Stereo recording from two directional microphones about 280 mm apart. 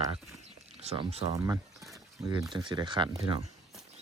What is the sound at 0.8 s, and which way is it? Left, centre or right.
Speech, right.